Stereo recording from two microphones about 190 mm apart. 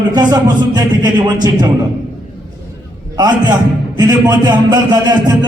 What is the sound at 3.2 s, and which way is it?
A man's voice, 20° right (ahead or behind).